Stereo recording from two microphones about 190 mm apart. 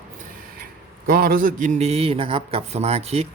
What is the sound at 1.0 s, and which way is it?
A man's voice, 50° right (ahead or behind).